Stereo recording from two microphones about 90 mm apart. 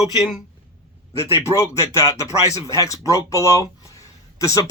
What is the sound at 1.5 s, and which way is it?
Speech, 40° left (ahead or behind).